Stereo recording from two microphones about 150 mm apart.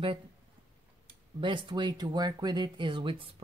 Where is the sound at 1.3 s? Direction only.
35° right (ahead or behind).